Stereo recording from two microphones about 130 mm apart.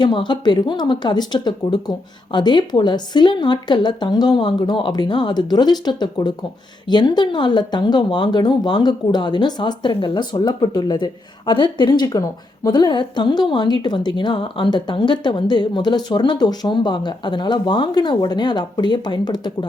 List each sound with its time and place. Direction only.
0.0 s speech: 35° left (ahead or behind)